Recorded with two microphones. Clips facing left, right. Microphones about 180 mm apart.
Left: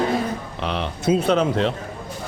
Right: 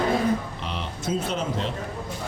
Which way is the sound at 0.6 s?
70° left (ahead or behind).